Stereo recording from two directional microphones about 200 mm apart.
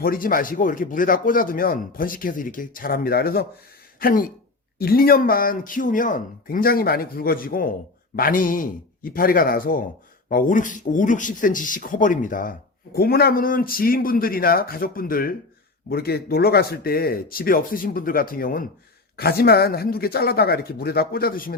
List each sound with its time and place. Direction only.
0.0 s speech: 45° left (ahead or behind)